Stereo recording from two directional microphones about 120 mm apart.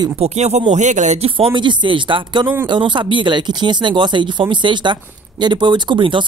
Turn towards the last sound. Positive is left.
turn(degrees=-45)  # may be behind; listen again after turning